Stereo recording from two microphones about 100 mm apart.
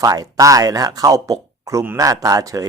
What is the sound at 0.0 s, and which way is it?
Speech, 35° right (ahead or behind).